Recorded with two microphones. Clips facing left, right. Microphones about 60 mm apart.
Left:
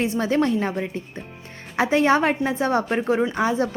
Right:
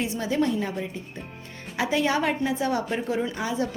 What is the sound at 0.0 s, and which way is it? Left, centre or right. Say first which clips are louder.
A woman's voice: left 4 dB; left.